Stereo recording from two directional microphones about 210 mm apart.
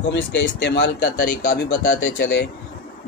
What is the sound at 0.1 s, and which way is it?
A man's voice, 55° left (ahead or behind).